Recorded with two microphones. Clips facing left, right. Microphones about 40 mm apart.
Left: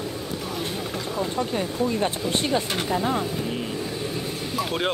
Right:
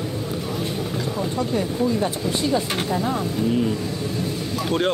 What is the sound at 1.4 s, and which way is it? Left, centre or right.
Speech, left.